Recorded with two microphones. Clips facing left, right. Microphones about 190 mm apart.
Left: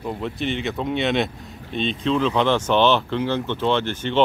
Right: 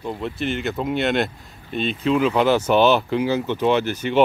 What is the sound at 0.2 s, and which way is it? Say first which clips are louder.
Speech: right 1 dB; centre (ahead or behind).